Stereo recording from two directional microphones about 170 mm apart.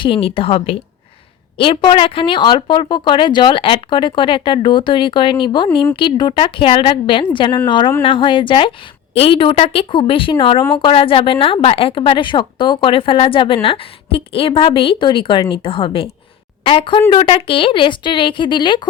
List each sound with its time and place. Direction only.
0.0 s a woman's voice: 30° left (ahead or behind)